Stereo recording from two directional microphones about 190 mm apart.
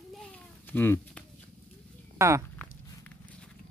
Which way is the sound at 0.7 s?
10° left (ahead or behind).